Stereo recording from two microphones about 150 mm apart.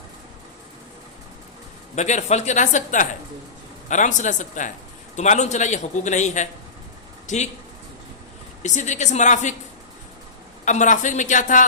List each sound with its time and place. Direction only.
2.0 s a man's voice: 50° left (ahead or behind)
8.6 s a man's voice: 55° left (ahead or behind)
10.7 s speech: 55° left (ahead or behind)